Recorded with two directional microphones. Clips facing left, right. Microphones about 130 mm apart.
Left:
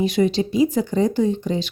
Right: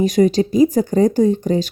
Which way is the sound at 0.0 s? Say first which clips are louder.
Right 5 dB; 40° right (ahead or behind).